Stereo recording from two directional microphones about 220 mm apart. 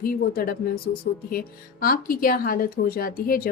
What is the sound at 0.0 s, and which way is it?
A woman's voice, 40° left (ahead or behind).